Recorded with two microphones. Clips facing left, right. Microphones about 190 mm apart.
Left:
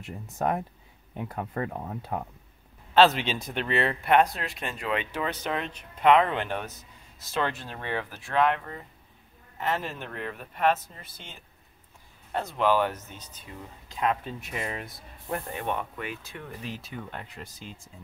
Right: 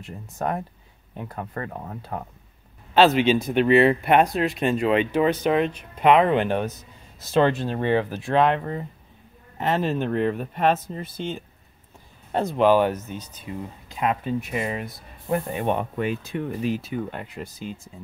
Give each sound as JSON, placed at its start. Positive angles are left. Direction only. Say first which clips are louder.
{"t": 0.0, "sound": "speech", "louder": "right 1 dB", "side_deg": 15}
{"t": 2.9, "sound": "speech", "louder": "right 4 dB", "side_deg": -5}